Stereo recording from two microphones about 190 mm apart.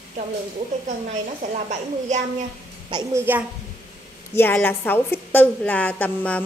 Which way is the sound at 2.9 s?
15° right (ahead or behind).